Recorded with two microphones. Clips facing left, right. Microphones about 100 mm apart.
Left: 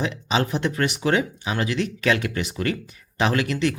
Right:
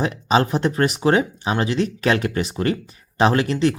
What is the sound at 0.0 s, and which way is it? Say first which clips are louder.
Speech: right 5 dB; 40° right (ahead or behind).